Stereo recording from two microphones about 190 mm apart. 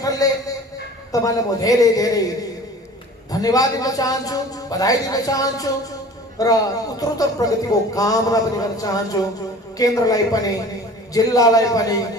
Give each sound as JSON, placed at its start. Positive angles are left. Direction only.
{"t": 0.0, "sound": "a sound", "side_deg": 20}
{"t": 1.1, "sound": "speech", "side_deg": 20}
{"t": 3.3, "sound": "speech", "side_deg": 20}